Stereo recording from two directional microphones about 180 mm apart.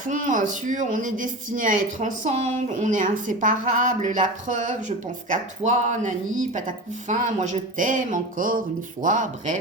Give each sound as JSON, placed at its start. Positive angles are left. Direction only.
{"t": 0.0, "sound": "speech", "side_deg": -45}